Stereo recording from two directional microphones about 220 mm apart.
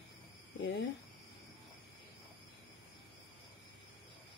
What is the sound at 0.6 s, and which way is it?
Speech, 55° left (ahead or behind).